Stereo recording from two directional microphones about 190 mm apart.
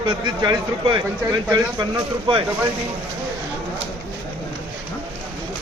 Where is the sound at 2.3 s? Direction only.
25° right (ahead or behind).